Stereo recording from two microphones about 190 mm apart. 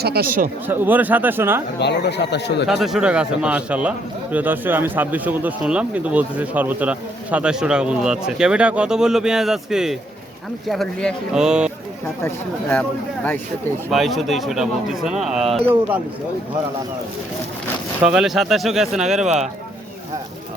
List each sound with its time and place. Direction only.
0.0 s speech: 55° right (ahead or behind)
0.7 s speech: 10° right (ahead or behind)
1.8 s speech: 65° left (ahead or behind)
2.6 s speech: centre (ahead or behind)
12.2 s speech: 10° left (ahead or behind)
13.9 s speech: centre (ahead or behind)
18.0 s speech: 5° right (ahead or behind)